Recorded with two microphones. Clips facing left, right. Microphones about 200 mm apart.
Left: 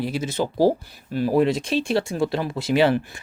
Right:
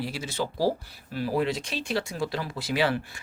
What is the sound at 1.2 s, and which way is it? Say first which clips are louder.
Speech: left 7 dB; 50° left (ahead or behind).